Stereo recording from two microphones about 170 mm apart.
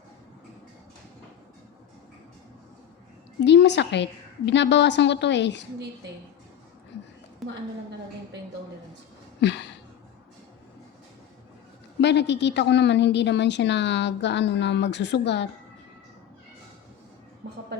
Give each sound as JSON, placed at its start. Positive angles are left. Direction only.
{"t": 3.4, "sound": "a woman's voice", "side_deg": 90}
{"t": 7.4, "sound": "a woman's voice", "side_deg": 0}
{"t": 9.4, "sound": "a woman's voice", "side_deg": 90}
{"t": 11.9, "sound": "a woman's voice", "side_deg": 90}